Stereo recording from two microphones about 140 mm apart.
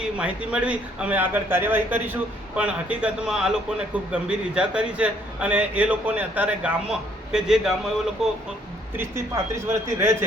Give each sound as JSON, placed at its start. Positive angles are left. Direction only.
{"t": 0.2, "sound": "a man's voice", "side_deg": -10}
{"t": 9.0, "sound": "a man's voice", "side_deg": -20}